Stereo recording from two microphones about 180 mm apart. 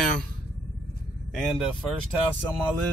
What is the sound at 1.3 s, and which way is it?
Speech, centre (ahead or behind).